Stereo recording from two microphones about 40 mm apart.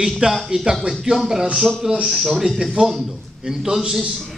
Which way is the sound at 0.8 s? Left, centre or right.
Centre.